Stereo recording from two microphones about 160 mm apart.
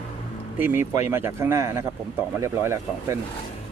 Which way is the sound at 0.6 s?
10° right (ahead or behind).